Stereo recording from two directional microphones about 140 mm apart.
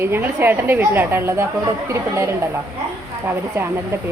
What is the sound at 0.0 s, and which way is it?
Speech, 15° right (ahead or behind).